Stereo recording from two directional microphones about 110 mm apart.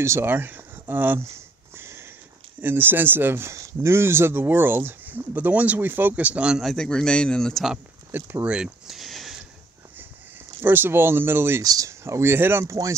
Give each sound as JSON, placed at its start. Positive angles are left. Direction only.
{"t": 0.0, "sound": "speech", "side_deg": -20}
{"t": 1.8, "sound": "sniff", "side_deg": -25}
{"t": 2.6, "sound": "speech", "side_deg": -20}
{"t": 8.1, "sound": "speech", "side_deg": -20}
{"t": 8.5, "sound": "a sound", "side_deg": -5}
{"t": 10.6, "sound": "speech", "side_deg": -20}
{"t": 11.6, "sound": "speech", "side_deg": -35}